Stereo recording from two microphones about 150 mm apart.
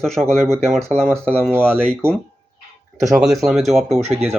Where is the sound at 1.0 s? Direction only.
10° right (ahead or behind).